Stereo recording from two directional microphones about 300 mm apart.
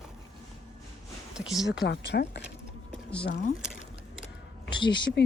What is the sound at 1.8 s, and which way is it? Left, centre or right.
Speech, left.